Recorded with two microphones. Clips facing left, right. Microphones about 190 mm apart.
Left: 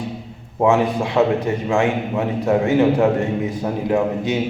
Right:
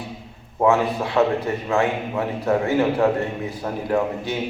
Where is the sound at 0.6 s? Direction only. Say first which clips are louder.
Left 2 dB; 20° left (ahead or behind).